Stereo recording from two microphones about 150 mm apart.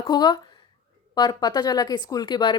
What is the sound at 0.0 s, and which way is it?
Speech, 30° left (ahead or behind).